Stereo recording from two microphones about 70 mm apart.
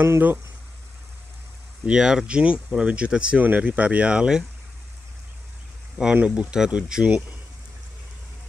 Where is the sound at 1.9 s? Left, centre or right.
Centre.